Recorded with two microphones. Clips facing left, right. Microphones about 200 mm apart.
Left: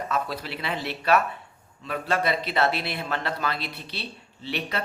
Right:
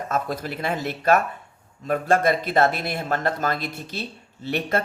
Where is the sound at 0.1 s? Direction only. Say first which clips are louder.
Right 6 dB; 45° right (ahead or behind).